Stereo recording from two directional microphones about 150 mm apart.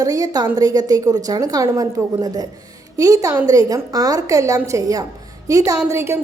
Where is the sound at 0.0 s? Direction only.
25° right (ahead or behind).